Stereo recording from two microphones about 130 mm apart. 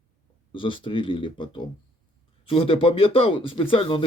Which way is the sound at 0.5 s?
40° left (ahead or behind).